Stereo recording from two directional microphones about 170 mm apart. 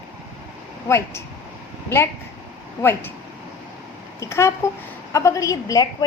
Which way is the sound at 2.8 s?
15° left (ahead or behind).